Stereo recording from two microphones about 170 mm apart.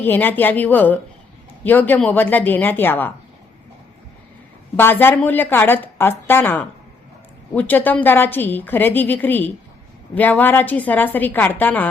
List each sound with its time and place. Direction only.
0.0 s a woman's voice: 10° left (ahead or behind)
4.8 s a woman's voice: 15° left (ahead or behind)